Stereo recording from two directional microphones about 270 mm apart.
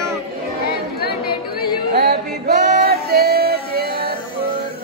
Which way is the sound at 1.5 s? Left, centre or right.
Left.